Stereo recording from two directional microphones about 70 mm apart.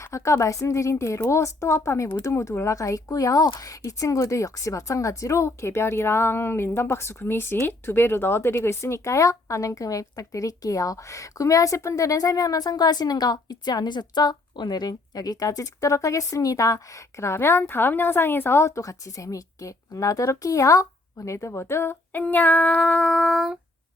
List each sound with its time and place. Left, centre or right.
0.0 s speech: left; by 23.5 s centre